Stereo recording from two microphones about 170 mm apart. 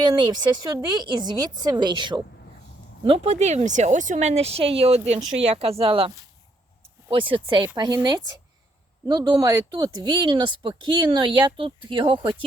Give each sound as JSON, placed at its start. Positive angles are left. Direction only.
{"t": 0.0, "sound": "speech", "side_deg": -25}